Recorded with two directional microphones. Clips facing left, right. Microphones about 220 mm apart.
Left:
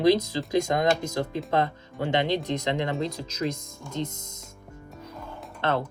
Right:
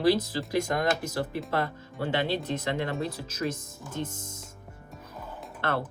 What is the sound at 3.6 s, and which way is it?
Speech, 5° right (ahead or behind).